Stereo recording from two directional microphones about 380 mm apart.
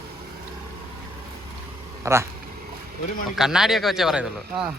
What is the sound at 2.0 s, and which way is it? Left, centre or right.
Speech, centre.